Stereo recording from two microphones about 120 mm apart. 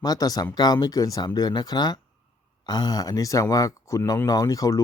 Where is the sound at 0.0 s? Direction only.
30° left (ahead or behind).